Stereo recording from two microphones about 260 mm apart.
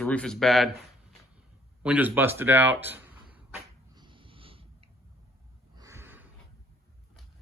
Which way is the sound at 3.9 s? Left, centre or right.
Centre.